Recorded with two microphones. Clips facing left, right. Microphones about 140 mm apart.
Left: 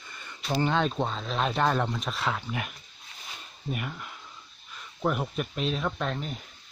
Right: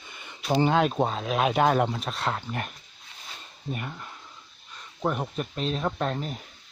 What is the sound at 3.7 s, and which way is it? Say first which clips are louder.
Speech: left 1 dB; 30° right (ahead or behind).